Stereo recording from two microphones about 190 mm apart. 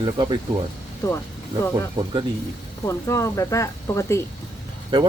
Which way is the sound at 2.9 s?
15° left (ahead or behind).